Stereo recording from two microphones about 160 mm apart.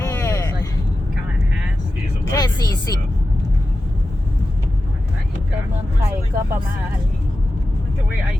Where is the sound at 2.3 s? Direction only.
25° left (ahead or behind).